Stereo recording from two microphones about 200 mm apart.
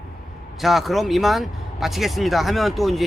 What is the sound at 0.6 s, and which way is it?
Speech, centre (ahead or behind).